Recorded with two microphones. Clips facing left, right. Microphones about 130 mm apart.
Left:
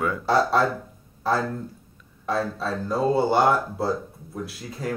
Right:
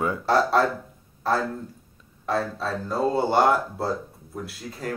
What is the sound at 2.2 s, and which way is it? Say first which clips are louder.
Speech: even; centre (ahead or behind).